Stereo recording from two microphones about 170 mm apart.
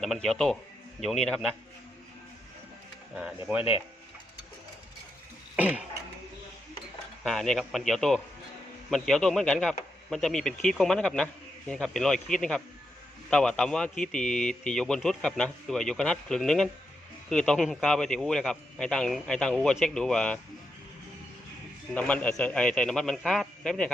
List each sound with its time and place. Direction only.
0.0 s a man's voice: centre (ahead or behind)
3.2 s a man's voice: 5° right (ahead or behind)
3.6 s speech: 30° left (ahead or behind)
5.5 s cough: 10° right (ahead or behind)
7.3 s a man's voice: 5° left (ahead or behind)
21.9 s a man's voice: 10° left (ahead or behind)